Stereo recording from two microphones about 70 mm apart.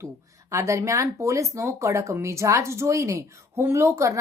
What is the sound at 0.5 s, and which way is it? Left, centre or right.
Speech, right.